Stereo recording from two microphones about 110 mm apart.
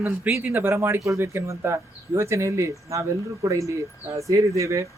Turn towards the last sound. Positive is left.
turn(degrees=-30)  # may be behind; listen again after turning